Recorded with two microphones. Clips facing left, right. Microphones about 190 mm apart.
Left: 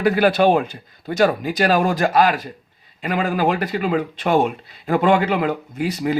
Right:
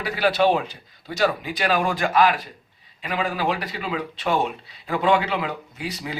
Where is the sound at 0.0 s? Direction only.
50° left (ahead or behind).